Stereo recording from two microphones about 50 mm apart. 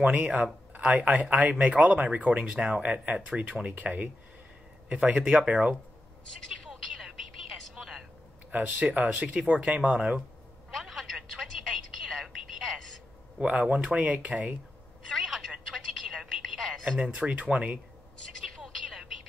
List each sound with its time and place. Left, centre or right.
0.0 s speech: right
2.8 s speech: right
3.2 s speech: right
5.1 s speech: centre
6.5 s telephone: centre
7.7 s a sound: centre
8.5 s speech: right
10.7 s telephone: centre
12.5 s a sound: centre
13.5 s speech: right
15.0 s telephone: centre
17.0 s speech: right